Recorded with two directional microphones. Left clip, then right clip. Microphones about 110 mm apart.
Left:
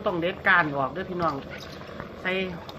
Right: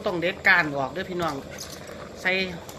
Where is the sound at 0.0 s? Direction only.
15° right (ahead or behind).